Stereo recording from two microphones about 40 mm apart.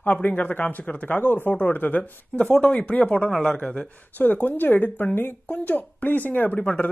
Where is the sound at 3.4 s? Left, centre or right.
Left.